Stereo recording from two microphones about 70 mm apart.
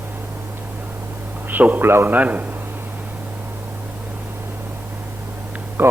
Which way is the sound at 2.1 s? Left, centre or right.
Right.